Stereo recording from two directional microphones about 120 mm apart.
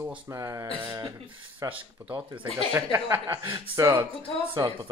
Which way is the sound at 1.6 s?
15° right (ahead or behind).